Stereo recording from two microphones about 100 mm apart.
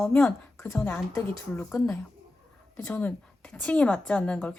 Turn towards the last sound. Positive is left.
turn(degrees=15)  # may be behind; listen again after turning